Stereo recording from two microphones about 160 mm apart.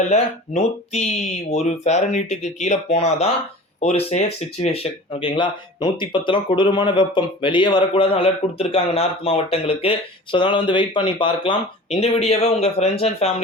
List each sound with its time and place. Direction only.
0.1 s speech: 45° left (ahead or behind)